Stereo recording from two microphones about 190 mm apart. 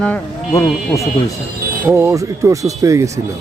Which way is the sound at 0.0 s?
5° left (ahead or behind).